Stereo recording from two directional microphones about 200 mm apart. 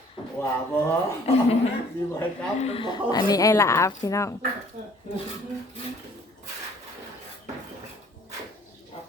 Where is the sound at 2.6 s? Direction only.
30° left (ahead or behind).